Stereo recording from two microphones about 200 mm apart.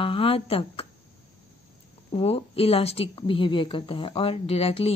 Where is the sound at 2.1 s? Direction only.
30° left (ahead or behind).